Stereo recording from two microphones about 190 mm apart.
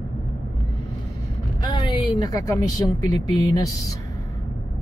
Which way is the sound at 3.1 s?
20° left (ahead or behind).